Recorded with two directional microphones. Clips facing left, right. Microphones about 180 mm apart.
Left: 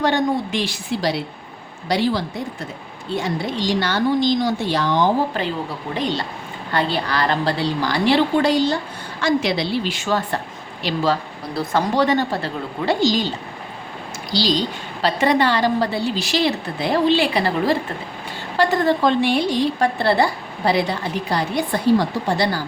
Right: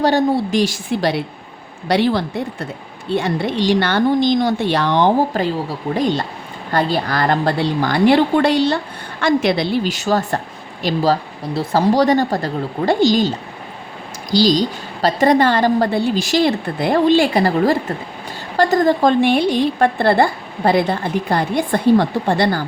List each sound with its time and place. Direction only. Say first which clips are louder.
0.0 s a woman's voice: right 4 dB; 35° right (ahead or behind); by 5.1 s 65° right (ahead or behind)
5.9 s a woman's voice: right 6 dB; 50° right (ahead or behind)
9.2 s a woman's voice: right 4 dB; 55° right (ahead or behind)
14.3 s a woman's voice: right 6 dB; 45° right (ahead or behind)